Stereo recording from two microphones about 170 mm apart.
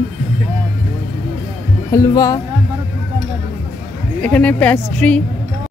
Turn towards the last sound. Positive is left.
turn(degrees=10)  # may be behind; listen again after turning